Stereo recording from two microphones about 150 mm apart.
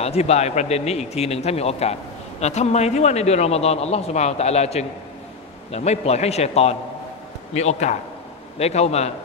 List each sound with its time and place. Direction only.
0.0 s a man's voice: 45° left (ahead or behind)